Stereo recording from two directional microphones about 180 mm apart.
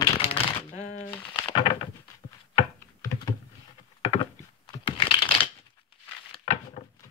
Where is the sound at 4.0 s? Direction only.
35° left (ahead or behind).